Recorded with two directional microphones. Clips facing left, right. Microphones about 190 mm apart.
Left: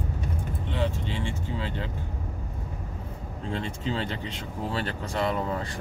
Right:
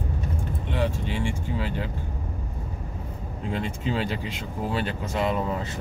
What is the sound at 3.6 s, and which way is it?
Speech, 15° right (ahead or behind).